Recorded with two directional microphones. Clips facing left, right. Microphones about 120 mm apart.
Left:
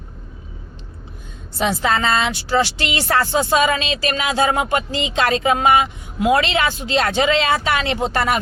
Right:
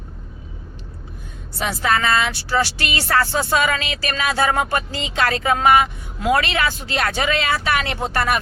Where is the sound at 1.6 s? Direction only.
20° left (ahead or behind).